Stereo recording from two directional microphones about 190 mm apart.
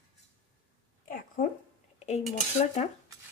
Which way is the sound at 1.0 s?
45° left (ahead or behind).